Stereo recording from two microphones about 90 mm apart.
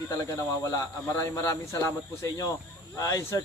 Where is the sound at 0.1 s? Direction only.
35° left (ahead or behind).